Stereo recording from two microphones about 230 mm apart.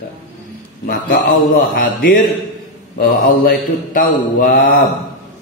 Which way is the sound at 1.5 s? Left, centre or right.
Left.